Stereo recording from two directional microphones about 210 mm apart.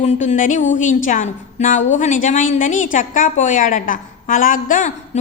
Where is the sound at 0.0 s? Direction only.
35° left (ahead or behind).